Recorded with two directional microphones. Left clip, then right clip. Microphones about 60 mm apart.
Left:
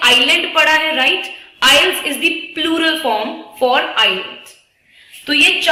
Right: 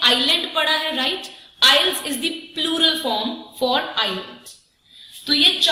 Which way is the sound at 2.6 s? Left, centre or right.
Left.